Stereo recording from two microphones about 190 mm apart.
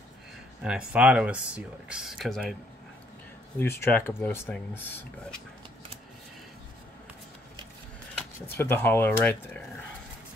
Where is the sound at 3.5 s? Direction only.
10° left (ahead or behind).